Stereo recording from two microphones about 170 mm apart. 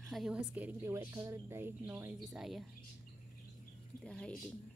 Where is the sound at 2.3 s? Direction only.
Centre (ahead or behind).